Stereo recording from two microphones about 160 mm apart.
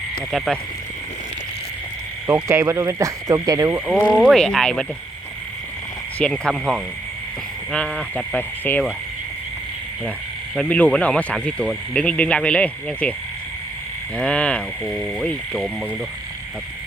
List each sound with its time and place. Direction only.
0.3 s speech: centre (ahead or behind)
2.2 s speech: 15° right (ahead or behind)
4.1 s speech: centre (ahead or behind)
6.1 s speech: 5° left (ahead or behind)
10.5 s speech: 5° left (ahead or behind)
14.2 s speech: 5° left (ahead or behind)